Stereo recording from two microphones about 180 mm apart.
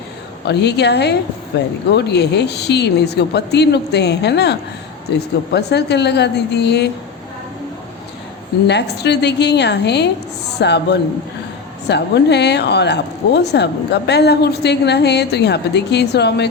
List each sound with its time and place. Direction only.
0.4 s a woman's voice: 70° left (ahead or behind)
8.6 s a woman's voice: 70° left (ahead or behind)